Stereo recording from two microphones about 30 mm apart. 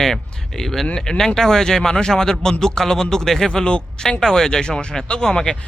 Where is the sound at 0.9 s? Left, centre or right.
Left.